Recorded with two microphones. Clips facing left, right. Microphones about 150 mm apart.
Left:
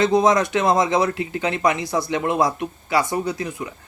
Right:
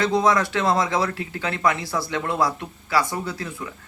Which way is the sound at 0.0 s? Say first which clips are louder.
Left 3 dB; 20° left (ahead or behind).